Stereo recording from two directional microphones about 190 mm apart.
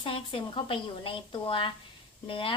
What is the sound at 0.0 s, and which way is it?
Speech, 25° left (ahead or behind).